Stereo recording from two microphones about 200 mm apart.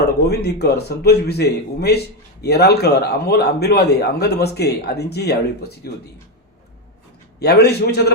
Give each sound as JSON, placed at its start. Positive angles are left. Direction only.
{"t": 0.0, "sound": "a man's voice", "side_deg": 55}
{"t": 7.3, "sound": "a man's voice", "side_deg": 55}